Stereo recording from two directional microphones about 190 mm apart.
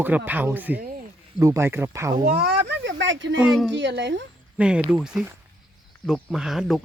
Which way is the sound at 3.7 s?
70° right (ahead or behind).